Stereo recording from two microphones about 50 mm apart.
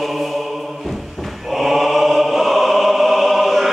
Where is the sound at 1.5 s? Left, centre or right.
Centre.